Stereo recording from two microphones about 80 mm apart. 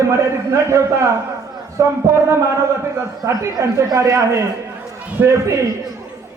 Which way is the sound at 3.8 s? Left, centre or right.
Right.